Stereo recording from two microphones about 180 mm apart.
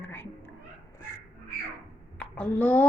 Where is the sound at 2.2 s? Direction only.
5° left (ahead or behind).